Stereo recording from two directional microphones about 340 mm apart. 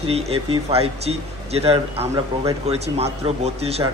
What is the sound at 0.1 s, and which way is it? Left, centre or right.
A man's voice, centre.